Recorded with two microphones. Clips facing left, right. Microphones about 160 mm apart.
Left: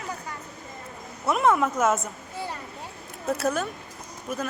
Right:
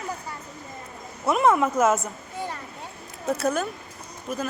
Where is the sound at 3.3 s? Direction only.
Centre (ahead or behind).